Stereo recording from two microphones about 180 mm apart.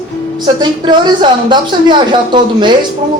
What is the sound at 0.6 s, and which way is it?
Speech, 25° right (ahead or behind).